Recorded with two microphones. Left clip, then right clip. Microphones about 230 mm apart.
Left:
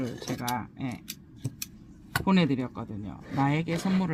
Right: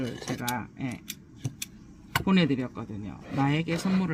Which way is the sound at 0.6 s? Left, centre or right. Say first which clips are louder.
Even; centre.